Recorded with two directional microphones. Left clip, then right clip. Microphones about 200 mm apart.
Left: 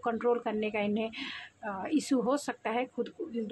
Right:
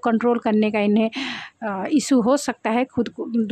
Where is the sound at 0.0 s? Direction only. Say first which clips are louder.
Right 9 dB; 40° right (ahead or behind).